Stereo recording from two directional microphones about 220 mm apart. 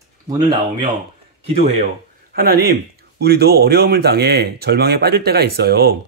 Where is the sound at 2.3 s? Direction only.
45° right (ahead or behind).